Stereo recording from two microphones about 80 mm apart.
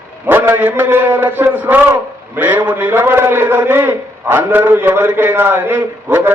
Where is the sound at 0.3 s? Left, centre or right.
Right.